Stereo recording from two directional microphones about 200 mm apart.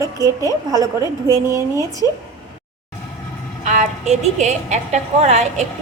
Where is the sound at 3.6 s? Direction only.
35° right (ahead or behind).